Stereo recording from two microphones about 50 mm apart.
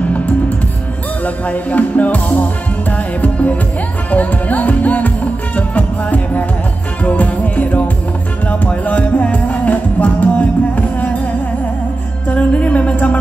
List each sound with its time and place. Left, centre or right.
0.0 s music: left
12.3 s music: left